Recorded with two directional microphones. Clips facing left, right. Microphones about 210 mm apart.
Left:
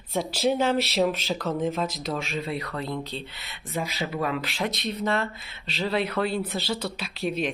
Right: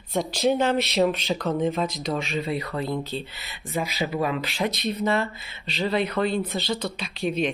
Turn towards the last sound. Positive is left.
turn(degrees=0)  # may be behind; listen again after turning